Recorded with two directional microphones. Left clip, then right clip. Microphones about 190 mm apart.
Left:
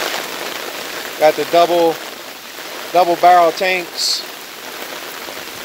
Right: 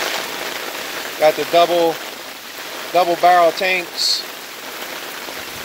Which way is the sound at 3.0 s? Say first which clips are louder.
Left 2 dB; 15° left (ahead or behind).